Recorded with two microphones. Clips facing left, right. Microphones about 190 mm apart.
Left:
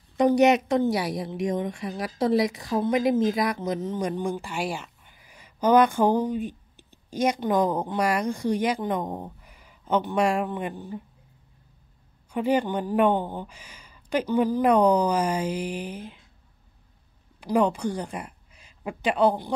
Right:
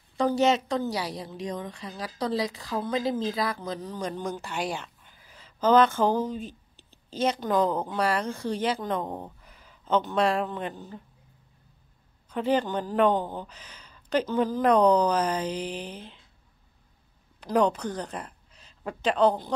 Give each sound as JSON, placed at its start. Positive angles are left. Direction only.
{"t": 0.2, "sound": "a woman's voice", "side_deg": 20}
{"t": 12.3, "sound": "a woman's voice", "side_deg": 10}
{"t": 17.4, "sound": "a woman's voice", "side_deg": 10}